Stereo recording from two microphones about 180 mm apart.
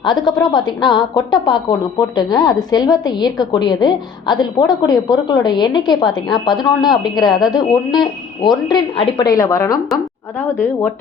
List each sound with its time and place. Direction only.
0.0 s a woman's voice: 25° left (ahead or behind)